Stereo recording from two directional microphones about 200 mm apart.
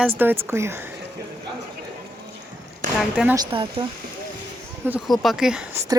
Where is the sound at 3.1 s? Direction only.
5° right (ahead or behind).